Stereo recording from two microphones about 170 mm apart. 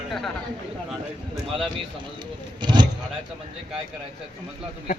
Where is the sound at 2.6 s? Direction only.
25° right (ahead or behind).